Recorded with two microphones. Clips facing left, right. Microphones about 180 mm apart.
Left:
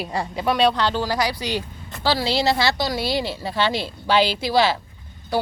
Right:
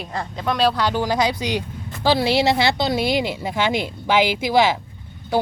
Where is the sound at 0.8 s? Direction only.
15° right (ahead or behind).